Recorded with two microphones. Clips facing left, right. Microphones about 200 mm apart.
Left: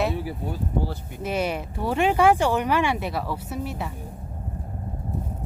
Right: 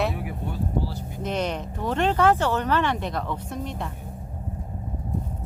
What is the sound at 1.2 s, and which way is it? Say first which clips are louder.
Speech: left 1 dB; 10° left (ahead or behind).